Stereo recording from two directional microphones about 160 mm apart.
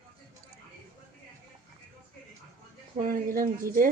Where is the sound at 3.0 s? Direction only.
60° right (ahead or behind).